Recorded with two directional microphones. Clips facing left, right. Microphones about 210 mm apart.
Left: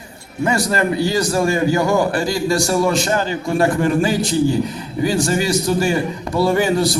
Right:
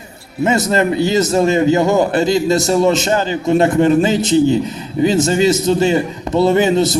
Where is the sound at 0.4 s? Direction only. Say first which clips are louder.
Right 4 dB; 20° right (ahead or behind).